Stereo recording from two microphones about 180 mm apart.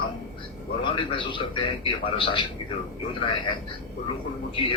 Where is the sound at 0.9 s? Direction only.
30° left (ahead or behind).